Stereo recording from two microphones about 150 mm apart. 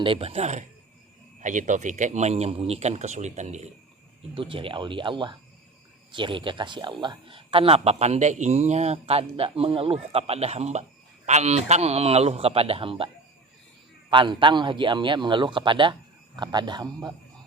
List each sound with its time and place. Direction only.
0.0 s speech: 40° right (ahead or behind)
4.4 s speech: 35° right (ahead or behind)
14.1 s speech: 35° right (ahead or behind)